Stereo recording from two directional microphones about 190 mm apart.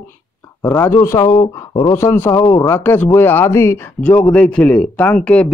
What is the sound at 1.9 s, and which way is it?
Speech, 10° left (ahead or behind).